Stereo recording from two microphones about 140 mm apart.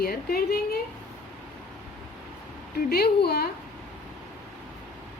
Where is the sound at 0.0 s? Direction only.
90° left.